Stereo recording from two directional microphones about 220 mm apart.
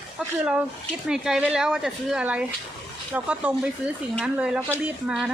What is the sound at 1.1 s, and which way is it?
Speech, centre (ahead or behind).